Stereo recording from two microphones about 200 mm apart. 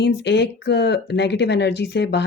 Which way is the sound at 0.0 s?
60° left (ahead or behind).